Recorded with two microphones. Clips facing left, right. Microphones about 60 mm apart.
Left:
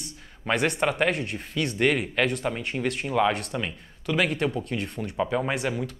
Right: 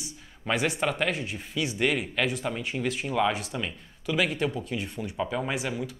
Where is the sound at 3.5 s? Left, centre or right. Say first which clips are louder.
Left 2 dB; centre.